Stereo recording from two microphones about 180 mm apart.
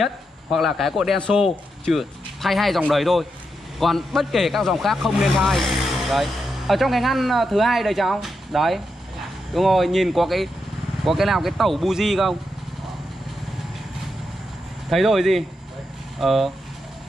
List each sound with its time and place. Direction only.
0.0 s speech: centre (ahead or behind)
14.9 s speech: centre (ahead or behind)